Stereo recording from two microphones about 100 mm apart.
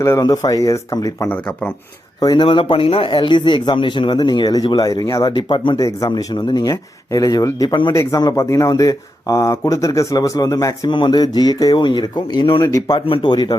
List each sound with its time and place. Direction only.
0.2 s speech: 40° left (ahead or behind)
1.3 s speech: 15° left (ahead or behind)
2.2 s speech: 45° left (ahead or behind)
2.5 s speech: 60° left (ahead or behind)
5.8 s speech: 40° left (ahead or behind)
10.9 s speech: 50° left (ahead or behind)